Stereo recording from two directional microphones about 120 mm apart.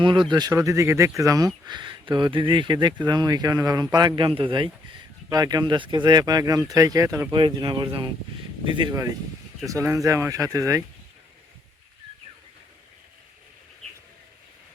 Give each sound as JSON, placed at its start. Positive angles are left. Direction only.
{"t": 0.0, "sound": "speech", "side_deg": -40}
{"t": 1.6, "sound": "speech", "side_deg": -40}
{"t": 3.9, "sound": "speech", "side_deg": -40}
{"t": 5.3, "sound": "speech", "side_deg": -30}
{"t": 7.3, "sound": "speech", "side_deg": -40}
{"t": 8.9, "sound": "speech", "side_deg": -25}